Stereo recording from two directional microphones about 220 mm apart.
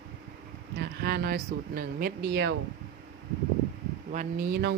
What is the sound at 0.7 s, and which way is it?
Speech, 45° right (ahead or behind).